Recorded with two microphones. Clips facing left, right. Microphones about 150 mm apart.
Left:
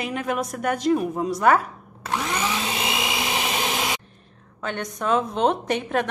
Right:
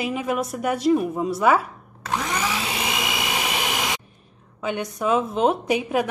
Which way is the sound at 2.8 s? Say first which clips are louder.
Even; 20° left (ahead or behind).